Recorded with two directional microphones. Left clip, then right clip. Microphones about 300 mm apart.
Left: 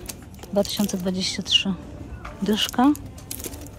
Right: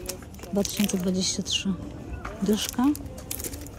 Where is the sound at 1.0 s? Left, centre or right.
Centre.